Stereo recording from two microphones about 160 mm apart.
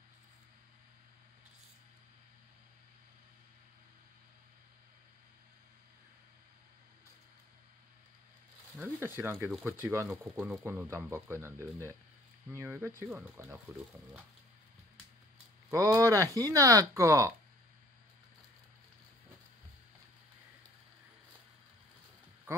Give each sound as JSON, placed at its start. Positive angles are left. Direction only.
{"t": 8.7, "sound": "speech", "side_deg": -10}
{"t": 15.7, "sound": "speech", "side_deg": -20}
{"t": 22.5, "sound": "a sound", "side_deg": -15}